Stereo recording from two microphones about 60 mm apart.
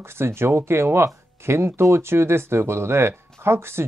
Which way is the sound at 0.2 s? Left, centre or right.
Right.